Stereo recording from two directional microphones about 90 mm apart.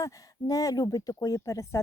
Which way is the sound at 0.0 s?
40° left (ahead or behind).